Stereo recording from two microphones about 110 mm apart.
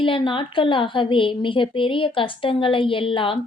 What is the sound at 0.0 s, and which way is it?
Speech, 50° left (ahead or behind).